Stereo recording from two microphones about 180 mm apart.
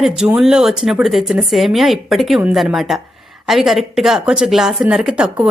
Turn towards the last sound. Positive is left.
turn(degrees=-5)  # may be behind; listen again after turning